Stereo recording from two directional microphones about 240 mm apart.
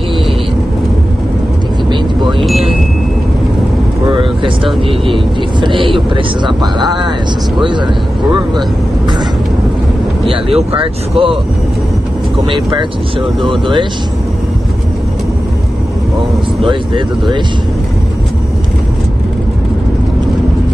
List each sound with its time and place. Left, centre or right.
2.4 s chime: centre
4.1 s vehicle: right
5.6 s speech: right
10.3 s speech: right
13.5 s speech: right
16.6 s speech: centre